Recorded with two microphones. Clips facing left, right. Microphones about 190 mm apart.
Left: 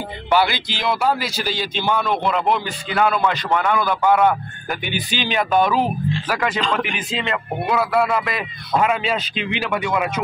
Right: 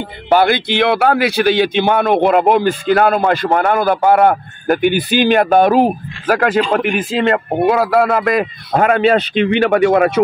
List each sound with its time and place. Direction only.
0.3 s a man's voice: 55° right (ahead or behind)